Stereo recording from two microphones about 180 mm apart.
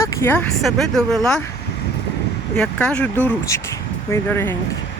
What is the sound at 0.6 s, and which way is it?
Speech, centre (ahead or behind).